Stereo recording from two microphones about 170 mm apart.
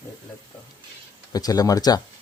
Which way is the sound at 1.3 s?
20° left (ahead or behind).